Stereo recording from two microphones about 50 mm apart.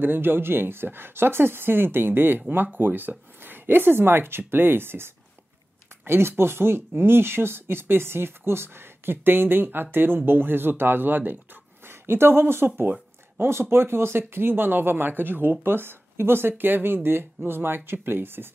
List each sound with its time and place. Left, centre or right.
0.0 s speech: right